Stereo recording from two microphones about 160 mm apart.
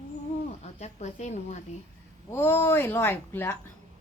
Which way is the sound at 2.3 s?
15° left (ahead or behind).